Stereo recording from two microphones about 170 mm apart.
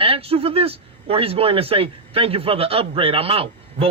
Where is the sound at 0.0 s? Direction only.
35° right (ahead or behind).